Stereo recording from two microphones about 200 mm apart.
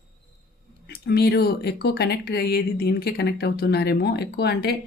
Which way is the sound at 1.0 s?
55° left (ahead or behind).